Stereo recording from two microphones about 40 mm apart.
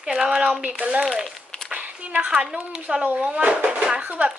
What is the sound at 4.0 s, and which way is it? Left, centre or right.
Speech, right.